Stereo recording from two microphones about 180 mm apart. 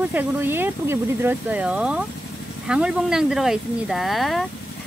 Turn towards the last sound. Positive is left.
turn(degrees=0)  # may be behind; listen again after turning